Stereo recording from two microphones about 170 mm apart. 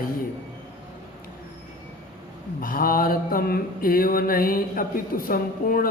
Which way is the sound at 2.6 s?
55° left (ahead or behind).